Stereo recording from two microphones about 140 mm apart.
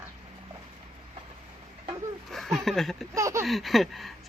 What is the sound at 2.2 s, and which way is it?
Speech, centre (ahead or behind).